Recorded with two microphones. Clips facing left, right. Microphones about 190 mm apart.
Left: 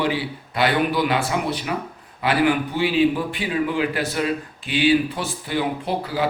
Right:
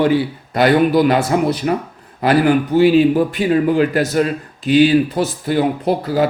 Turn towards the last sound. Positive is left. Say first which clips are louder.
# right 8 dB
turn(degrees=-40)  # may be behind; listen again after turning